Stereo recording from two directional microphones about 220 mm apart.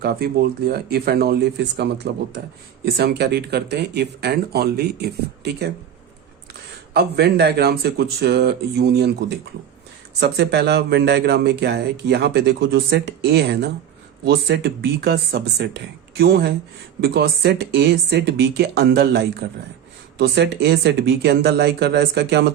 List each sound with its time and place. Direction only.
0.0 s speech: 45° right (ahead or behind)
6.9 s speech: 50° right (ahead or behind)
10.2 s speech: 45° right (ahead or behind)